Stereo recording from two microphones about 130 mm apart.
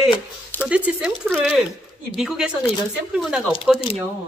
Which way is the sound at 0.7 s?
10° right (ahead or behind).